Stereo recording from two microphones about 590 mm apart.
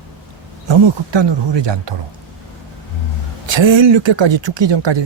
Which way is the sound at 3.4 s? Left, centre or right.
Right.